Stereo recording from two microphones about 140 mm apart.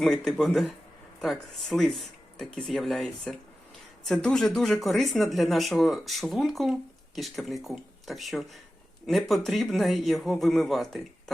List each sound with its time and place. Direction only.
0.0 s speech: 5° left (ahead or behind)